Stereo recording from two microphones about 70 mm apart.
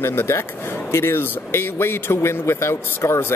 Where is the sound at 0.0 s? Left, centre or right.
Left.